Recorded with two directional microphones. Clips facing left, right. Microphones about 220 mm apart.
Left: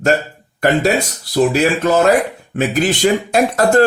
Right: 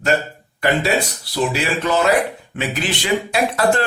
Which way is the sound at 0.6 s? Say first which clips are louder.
Left 4 dB; 45° left (ahead or behind).